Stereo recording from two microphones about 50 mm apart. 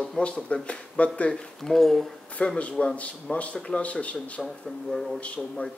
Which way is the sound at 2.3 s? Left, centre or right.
Left.